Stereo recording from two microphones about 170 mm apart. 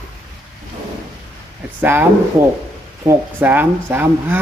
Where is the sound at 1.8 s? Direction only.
10° right (ahead or behind).